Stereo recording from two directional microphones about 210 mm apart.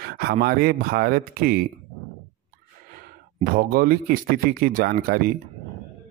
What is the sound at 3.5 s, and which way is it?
Speech, 45° right (ahead or behind).